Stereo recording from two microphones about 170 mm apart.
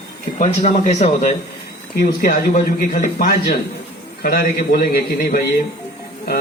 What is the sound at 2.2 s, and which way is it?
A man's voice, 60° left (ahead or behind).